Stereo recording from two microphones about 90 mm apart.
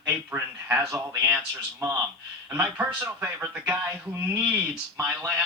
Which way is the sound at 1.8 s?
40° right (ahead or behind).